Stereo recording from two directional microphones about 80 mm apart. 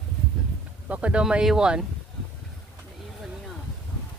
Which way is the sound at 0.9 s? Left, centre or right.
Centre.